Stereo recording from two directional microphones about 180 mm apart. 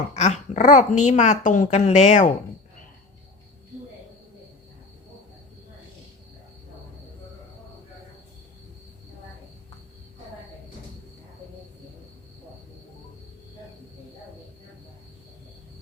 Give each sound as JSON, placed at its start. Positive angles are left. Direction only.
{"t": 0.2, "sound": "a child's voice", "side_deg": 40}